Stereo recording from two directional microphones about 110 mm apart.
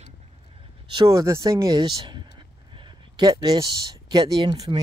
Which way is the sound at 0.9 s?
30° right (ahead or behind).